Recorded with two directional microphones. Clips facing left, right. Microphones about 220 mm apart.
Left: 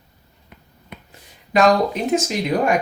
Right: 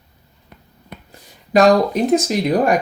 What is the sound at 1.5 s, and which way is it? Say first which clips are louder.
Speech: right 3 dB; 40° right (ahead or behind).